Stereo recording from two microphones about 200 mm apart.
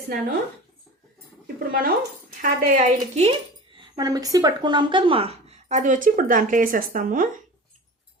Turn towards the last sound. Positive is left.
turn(degrees=-45)  # may be behind; listen again after turning